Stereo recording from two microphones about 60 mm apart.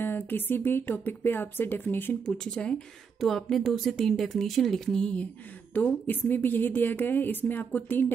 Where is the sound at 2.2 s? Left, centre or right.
Centre.